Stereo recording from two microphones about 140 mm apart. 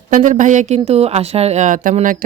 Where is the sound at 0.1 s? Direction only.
70° right (ahead or behind).